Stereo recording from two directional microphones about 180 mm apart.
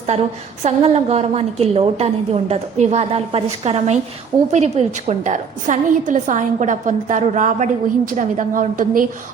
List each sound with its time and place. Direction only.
0.1 s a woman's voice: 35° right (ahead or behind)